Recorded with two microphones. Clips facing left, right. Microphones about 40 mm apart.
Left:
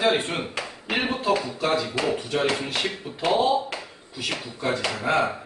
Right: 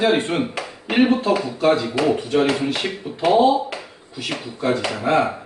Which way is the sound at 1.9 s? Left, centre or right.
Centre.